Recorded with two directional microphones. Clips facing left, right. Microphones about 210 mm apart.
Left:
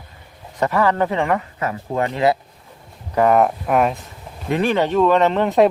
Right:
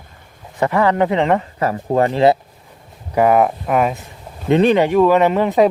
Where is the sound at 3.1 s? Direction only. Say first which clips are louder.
Right 1 dB; 5° right (ahead or behind).